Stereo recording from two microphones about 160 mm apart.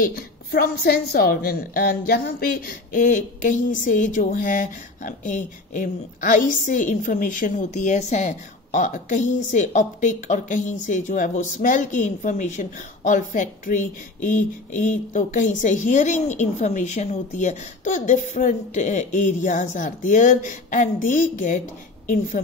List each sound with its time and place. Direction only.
0.0 s a woman's voice: 75° left (ahead or behind); by 21.6 s 50° left (ahead or behind)